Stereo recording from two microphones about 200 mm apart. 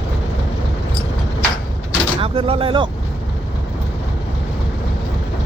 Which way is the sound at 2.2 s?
25° right (ahead or behind).